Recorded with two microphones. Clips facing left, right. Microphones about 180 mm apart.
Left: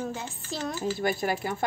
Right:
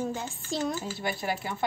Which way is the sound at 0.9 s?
45° left (ahead or behind).